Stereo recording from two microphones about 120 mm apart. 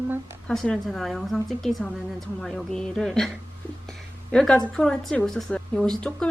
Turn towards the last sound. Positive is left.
turn(degrees=10)  # may be behind; listen again after turning